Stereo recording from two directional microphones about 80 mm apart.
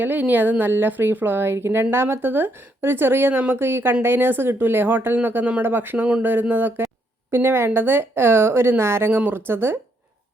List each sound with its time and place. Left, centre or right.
0.0 s a woman's voice: right